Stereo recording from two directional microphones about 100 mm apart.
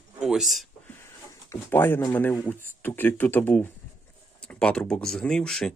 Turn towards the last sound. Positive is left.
turn(degrees=5)  # may be behind; listen again after turning